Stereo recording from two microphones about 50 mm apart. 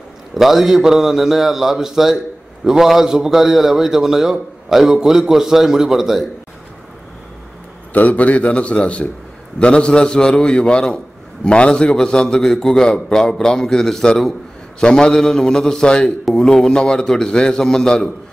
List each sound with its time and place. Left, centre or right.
0.3 s a man's voice: centre
7.9 s a man's voice: left; by 18.1 s centre